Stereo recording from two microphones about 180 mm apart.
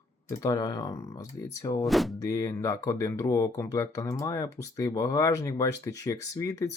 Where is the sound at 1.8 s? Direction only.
Centre (ahead or behind).